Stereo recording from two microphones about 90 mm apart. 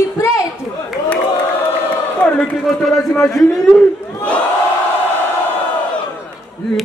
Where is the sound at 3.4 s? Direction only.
10° left (ahead or behind).